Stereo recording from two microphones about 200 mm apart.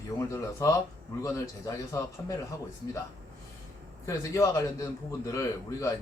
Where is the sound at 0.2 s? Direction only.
15° left (ahead or behind).